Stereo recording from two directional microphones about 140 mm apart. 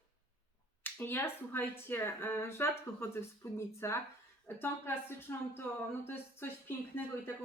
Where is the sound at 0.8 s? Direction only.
15° left (ahead or behind).